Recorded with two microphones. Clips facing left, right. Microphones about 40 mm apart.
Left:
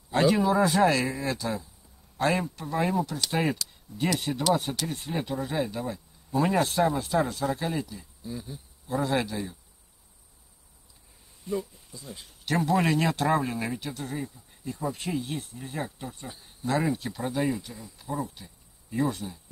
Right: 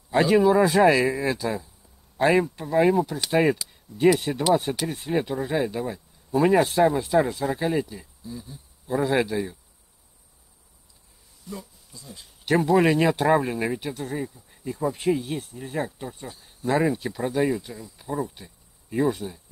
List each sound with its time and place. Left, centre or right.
0.1 s speech: centre
4.6 s speech: centre
8.2 s speech: centre
9.0 s speech: centre
11.5 s speech: centre
12.6 s speech: centre
17.9 s cricket: centre
19.0 s speech: centre